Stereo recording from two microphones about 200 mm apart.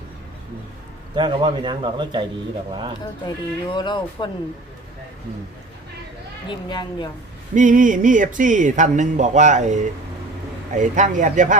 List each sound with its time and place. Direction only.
1.1 s a man's voice: 25° right (ahead or behind)
3.8 s speech: 20° left (ahead or behind)
6.5 s speech: 20° left (ahead or behind)
7.5 s speech: 40° right (ahead or behind)